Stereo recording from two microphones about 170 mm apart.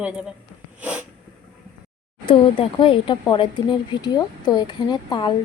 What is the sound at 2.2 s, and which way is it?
Speech, 30° left (ahead or behind).